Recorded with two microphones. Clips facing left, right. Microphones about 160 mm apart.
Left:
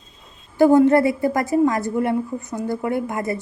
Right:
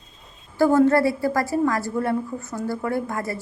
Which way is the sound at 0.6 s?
20° left (ahead or behind).